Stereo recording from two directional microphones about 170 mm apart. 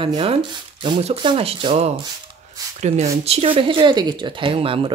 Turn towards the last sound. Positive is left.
turn(degrees=-30)  # may be behind; listen again after turning